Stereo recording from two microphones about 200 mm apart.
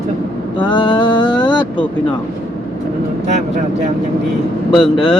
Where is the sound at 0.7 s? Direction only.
25° left (ahead or behind).